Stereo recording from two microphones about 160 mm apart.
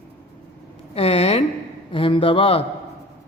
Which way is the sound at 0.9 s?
40° left (ahead or behind).